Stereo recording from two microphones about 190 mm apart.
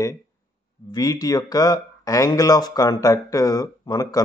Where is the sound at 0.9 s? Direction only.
20° left (ahead or behind).